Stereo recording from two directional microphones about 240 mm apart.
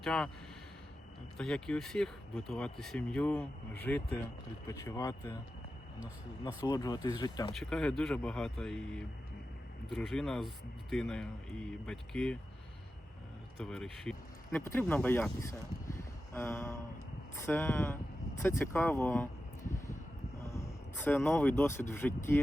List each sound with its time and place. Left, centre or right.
0.0 s speech: centre
1.4 s speech: centre
6.7 s speech: centre
7.5 s speech: centre
13.6 s speech: centre
16.0 s a sound: centre
17.4 s speech: centre
20.5 s speech: centre